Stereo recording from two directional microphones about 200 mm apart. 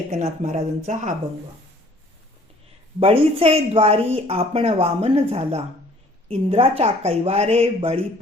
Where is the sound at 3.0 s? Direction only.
30° right (ahead or behind).